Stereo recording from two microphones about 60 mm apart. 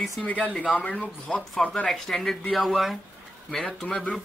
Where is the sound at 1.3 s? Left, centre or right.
Centre.